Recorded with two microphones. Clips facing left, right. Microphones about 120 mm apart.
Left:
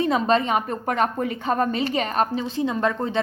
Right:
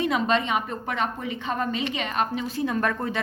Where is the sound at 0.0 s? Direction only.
35° left (ahead or behind).